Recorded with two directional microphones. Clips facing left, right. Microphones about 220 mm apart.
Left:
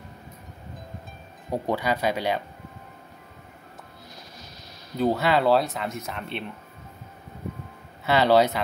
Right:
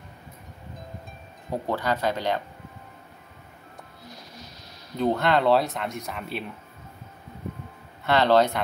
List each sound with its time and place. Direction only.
1.5 s speech: 10° left (ahead or behind)
4.9 s speech: 5° left (ahead or behind)
8.0 s speech: 5° left (ahead or behind)